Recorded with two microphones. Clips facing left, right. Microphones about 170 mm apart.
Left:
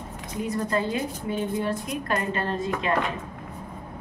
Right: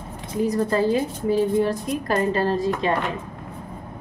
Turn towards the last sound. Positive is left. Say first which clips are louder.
# right 6 dB
turn(degrees=-35)  # may be behind; listen again after turning